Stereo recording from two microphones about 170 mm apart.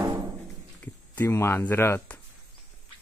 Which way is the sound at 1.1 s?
15° left (ahead or behind).